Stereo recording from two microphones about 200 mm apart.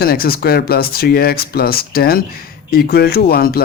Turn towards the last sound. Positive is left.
turn(degrees=50)  # may be behind; listen again after turning